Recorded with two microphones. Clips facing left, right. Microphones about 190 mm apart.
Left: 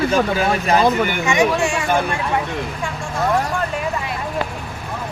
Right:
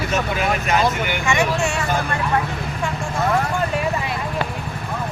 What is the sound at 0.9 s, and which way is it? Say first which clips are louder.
Speech: left 5 dB; 45° left (ahead or behind).